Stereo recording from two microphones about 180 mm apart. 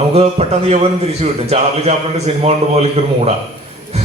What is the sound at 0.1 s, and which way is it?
A man's voice, 35° right (ahead or behind).